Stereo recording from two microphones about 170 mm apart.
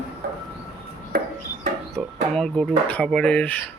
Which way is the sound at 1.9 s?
5° left (ahead or behind).